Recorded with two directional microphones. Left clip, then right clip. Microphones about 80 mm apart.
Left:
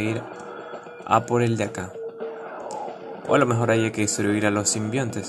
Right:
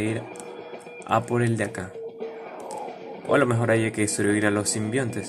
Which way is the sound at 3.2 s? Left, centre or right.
Left.